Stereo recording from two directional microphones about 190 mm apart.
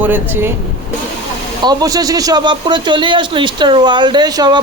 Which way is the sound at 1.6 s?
20° right (ahead or behind).